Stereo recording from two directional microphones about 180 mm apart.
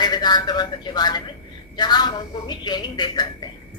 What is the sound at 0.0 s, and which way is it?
Speech, 25° left (ahead or behind).